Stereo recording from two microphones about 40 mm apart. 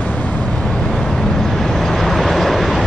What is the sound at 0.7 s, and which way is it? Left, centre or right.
Vehicle, centre.